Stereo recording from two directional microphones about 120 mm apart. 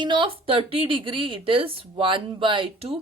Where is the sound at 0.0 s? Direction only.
40° right (ahead or behind).